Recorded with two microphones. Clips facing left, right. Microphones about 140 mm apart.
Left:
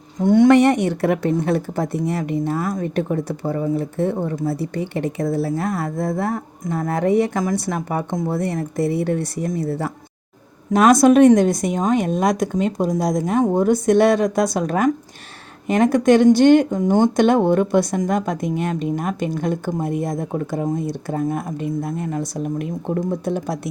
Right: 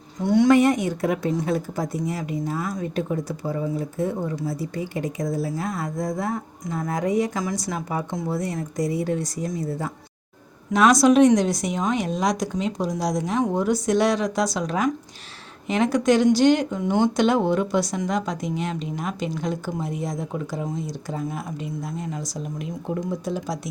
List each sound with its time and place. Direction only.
0.2 s a woman's voice: 50° left (ahead or behind)
10.7 s speech: 50° left (ahead or behind)